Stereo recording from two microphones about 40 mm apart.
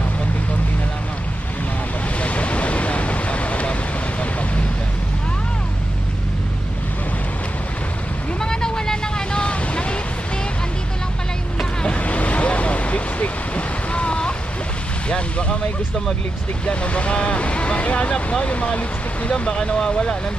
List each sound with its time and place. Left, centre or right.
2.2 s vehicle: left
8.4 s vehicle: centre
12.0 s vehicle: left
16.6 s vehicle: left
18.4 s a sound: left
19.3 s vehicle: centre